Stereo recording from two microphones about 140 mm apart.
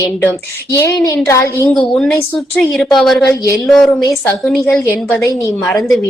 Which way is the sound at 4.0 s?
25° left (ahead or behind).